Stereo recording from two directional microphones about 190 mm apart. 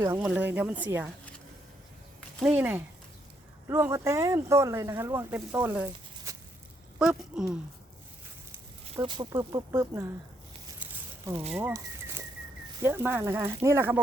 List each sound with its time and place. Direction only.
0.2 s speech: 10° right (ahead or behind)
2.4 s speech: 10° right (ahead or behind)
8.8 s speech: 30° right (ahead or behind)
10.8 s a sound: 10° right (ahead or behind)
12.8 s speech: 10° right (ahead or behind)